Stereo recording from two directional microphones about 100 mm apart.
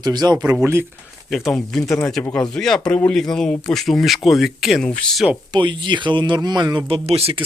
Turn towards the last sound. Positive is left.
turn(degrees=-80)